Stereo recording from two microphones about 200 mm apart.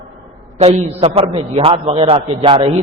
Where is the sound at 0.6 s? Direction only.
35° right (ahead or behind).